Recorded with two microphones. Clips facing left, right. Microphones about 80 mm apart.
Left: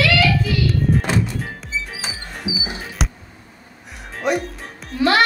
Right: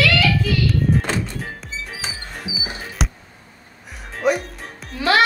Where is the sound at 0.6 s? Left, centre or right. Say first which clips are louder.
Even; centre.